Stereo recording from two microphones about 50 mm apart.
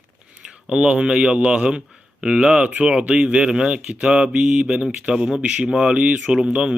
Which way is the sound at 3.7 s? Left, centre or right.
Right.